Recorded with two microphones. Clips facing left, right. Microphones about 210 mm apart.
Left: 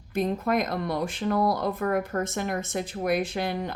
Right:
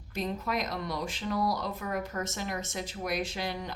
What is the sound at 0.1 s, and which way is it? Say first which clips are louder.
Speech: left 7 dB; 55° left (ahead or behind).